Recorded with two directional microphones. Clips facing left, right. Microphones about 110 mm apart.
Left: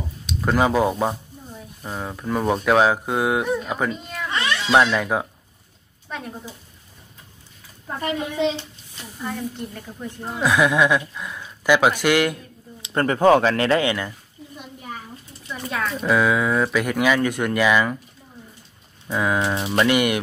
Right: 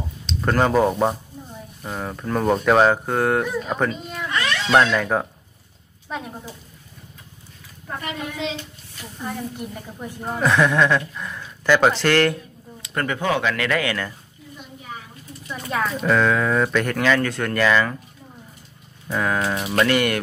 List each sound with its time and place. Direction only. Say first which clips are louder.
0.3 s a child's voice: even; 5° left (ahead or behind)
4.3 s a sound: even; 25° left (ahead or behind)
4.7 s speech: right 1 dB; 10° left (ahead or behind)
6.0 s speech: right 1 dB; 5° right (ahead or behind)
8.0 s speech: left 7 dB; 35° left (ahead or behind)
9.2 s a woman's voice: left 1 dB; 10° right (ahead or behind)
10.3 s speech: even; 10° left (ahead or behind)
12.8 s speech: left 7 dB; 30° left (ahead or behind)
15.4 s speech: right 2 dB; centre (ahead or behind); by 17.9 s 15° left (ahead or behind)
19.0 s speech: left 1 dB; 10° left (ahead or behind)